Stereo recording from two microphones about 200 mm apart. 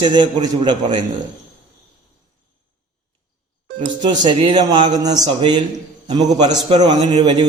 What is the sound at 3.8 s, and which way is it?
A man's voice, 20° right (ahead or behind).